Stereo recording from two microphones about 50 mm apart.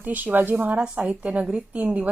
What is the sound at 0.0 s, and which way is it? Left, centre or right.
Speech, right.